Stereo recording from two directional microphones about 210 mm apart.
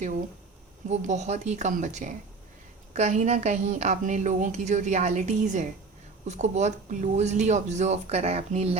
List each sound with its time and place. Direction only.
0.9 s a woman's voice: 35° right (ahead or behind)